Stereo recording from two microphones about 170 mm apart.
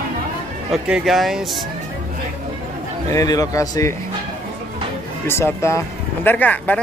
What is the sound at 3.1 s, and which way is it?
Speech, 20° left (ahead or behind).